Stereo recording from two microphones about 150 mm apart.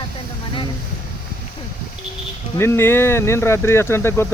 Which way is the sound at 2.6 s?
15° left (ahead or behind).